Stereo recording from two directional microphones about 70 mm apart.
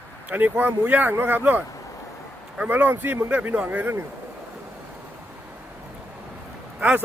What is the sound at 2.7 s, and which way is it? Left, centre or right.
Speech, right.